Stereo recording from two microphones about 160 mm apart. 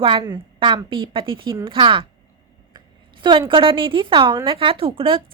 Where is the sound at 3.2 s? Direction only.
30° right (ahead or behind).